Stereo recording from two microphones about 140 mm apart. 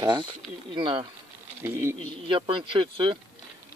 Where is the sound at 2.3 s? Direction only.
35° right (ahead or behind).